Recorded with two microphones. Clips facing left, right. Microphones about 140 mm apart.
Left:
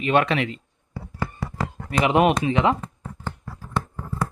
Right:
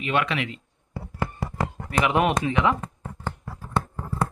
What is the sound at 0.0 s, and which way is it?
Speech, 35° left (ahead or behind).